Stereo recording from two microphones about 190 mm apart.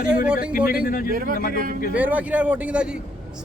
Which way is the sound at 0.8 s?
50° left (ahead or behind).